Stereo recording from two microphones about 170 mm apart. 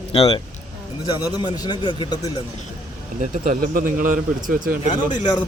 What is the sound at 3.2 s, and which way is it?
Speech, 50° right (ahead or behind).